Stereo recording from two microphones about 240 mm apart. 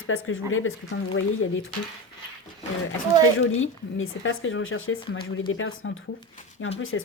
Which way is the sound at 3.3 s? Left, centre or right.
Left.